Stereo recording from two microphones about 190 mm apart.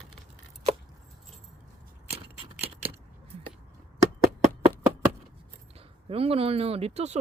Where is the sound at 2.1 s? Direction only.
30° right (ahead or behind).